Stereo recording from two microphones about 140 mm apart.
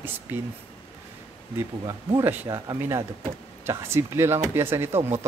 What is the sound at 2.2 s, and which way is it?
Speech, 15° right (ahead or behind).